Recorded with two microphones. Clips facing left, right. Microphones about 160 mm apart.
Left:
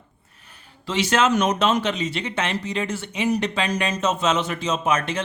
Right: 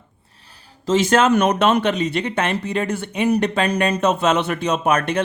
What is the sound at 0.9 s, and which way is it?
Speech, 50° right (ahead or behind).